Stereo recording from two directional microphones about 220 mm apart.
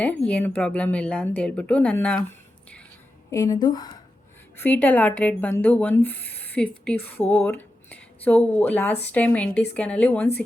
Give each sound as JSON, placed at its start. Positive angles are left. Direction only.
{"t": 0.0, "sound": "a woman's voice", "side_deg": 5}
{"t": 3.2, "sound": "speech", "side_deg": 15}
{"t": 4.5, "sound": "a woman's voice", "side_deg": 10}